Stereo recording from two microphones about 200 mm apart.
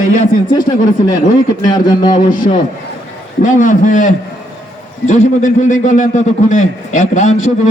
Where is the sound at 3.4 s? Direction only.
40° left (ahead or behind).